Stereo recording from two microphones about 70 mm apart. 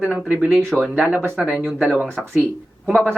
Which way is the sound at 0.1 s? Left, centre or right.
Right.